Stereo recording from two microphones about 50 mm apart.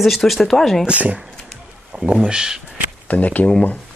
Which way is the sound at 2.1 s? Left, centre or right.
Centre.